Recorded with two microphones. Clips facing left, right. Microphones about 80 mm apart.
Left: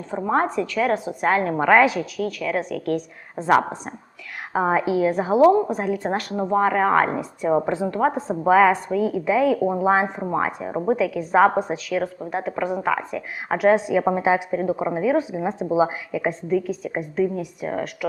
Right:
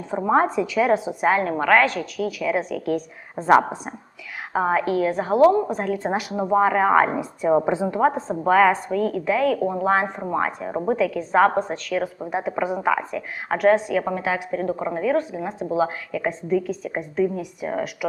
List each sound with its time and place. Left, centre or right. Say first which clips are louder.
0.1 s speech: right 2 dB; centre
1.2 s a woman's voice: even; centre
4.5 s a woman's voice: left 1 dB; centre
6.1 s a woman's voice: right 1 dB; centre
7.6 s speech: right 1 dB; centre
8.1 s a woman's voice: left 1 dB; centre
13.7 s a woman's voice: left 3 dB; centre
14.5 s a woman's voice: left 2 dB; centre
15.4 s a woman's voice: left 4 dB; left
15.7 s a woman's voice: left 2 dB; centre
16.5 s a woman's voice: right 2 dB; centre